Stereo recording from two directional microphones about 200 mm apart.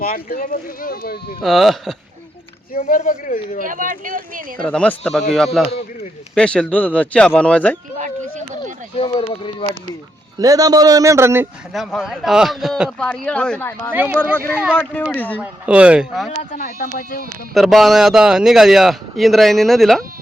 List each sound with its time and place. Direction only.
0.0 s speech: 45° left (ahead or behind)
1.4 s speech: centre (ahead or behind)
2.8 s speech: 40° left (ahead or behind)
3.6 s speech: 40° right (ahead or behind)
4.6 s speech: 5° left (ahead or behind)
9.0 s speech: 25° left (ahead or behind)
10.3 s a man's voice: 15° right (ahead or behind)
11.7 s speech: centre (ahead or behind)
13.9 s a man's voice: 10° right (ahead or behind)
14.8 s speech: 5° left (ahead or behind)
15.4 s speech: 5° right (ahead or behind)
16.4 s speech: 40° left (ahead or behind)
17.5 s speech: centre (ahead or behind)